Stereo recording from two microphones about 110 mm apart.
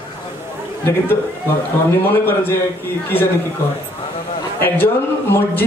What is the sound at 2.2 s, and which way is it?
Speech, 20° left (ahead or behind).